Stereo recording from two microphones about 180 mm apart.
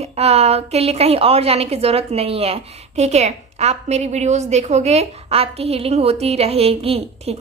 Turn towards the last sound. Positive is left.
turn(degrees=-35)  # may be behind; listen again after turning